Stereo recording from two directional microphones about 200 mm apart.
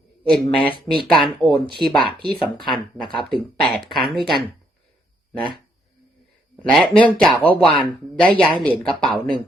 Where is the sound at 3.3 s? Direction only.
20° right (ahead or behind).